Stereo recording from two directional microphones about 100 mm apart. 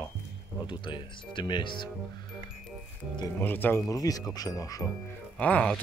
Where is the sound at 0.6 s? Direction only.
50° left (ahead or behind).